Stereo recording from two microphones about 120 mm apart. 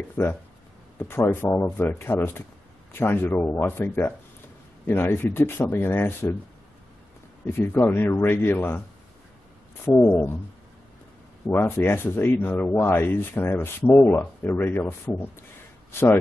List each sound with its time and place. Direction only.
0.2 s speech: 15° left (ahead or behind)
7.4 s speech: 20° left (ahead or behind)
11.4 s speech: 20° left (ahead or behind)